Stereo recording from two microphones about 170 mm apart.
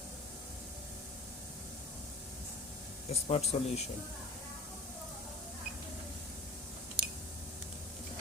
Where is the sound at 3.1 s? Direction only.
35° left (ahead or behind).